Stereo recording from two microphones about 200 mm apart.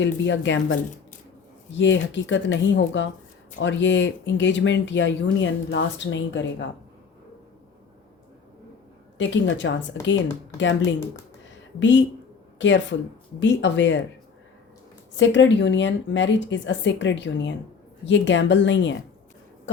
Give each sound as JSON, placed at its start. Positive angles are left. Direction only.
{"t": 0.0, "sound": "speech", "side_deg": 65}
{"t": 9.1, "sound": "a woman's voice", "side_deg": 65}
{"t": 11.4, "sound": "a sound", "side_deg": 65}
{"t": 12.5, "sound": "a woman's voice", "side_deg": 65}
{"t": 15.2, "sound": "speech", "side_deg": 65}